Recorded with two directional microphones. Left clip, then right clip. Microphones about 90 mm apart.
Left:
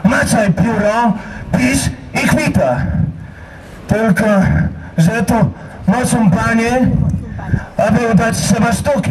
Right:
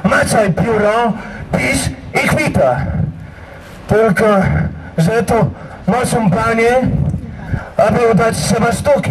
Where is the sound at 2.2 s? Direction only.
15° left (ahead or behind).